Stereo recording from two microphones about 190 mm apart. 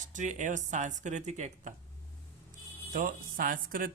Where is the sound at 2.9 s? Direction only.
45° right (ahead or behind).